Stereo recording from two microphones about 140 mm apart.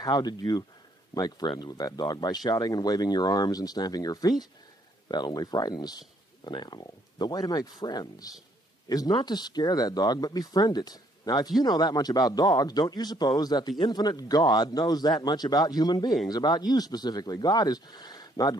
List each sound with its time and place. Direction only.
0.1 s a man's voice: 30° left (ahead or behind)